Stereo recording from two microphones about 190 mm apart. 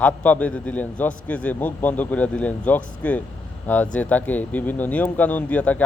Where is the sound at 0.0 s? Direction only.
5° left (ahead or behind).